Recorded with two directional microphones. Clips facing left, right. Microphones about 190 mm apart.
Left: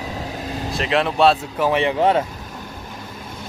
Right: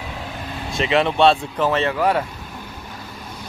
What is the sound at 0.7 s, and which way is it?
Speech, centre (ahead or behind).